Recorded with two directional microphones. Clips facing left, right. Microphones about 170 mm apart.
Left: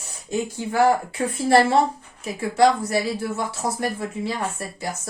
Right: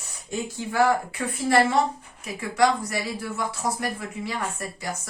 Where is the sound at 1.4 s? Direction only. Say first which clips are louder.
Left 3 dB; 30° left (ahead or behind).